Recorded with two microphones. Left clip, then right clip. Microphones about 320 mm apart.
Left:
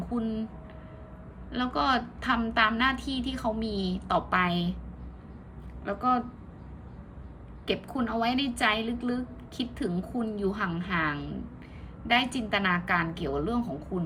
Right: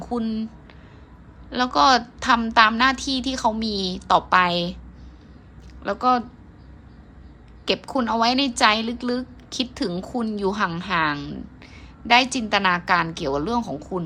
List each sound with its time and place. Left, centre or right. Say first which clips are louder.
0.1 s a woman's voice: right 6 dB; centre
1.5 s a woman's voice: right 10 dB; centre
5.8 s a woman's voice: right 7 dB; centre
7.7 s a woman's voice: right 8 dB; centre